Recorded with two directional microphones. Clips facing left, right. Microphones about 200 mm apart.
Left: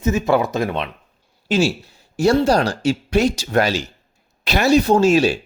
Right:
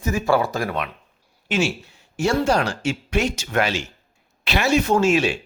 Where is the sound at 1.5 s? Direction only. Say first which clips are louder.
Left 4 dB; 35° left (ahead or behind).